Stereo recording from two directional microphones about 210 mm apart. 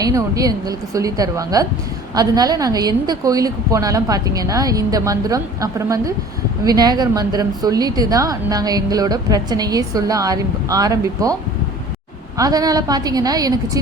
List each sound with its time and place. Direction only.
0.0 s a woman's voice: 15° right (ahead or behind)
12.4 s a woman's voice: 20° right (ahead or behind)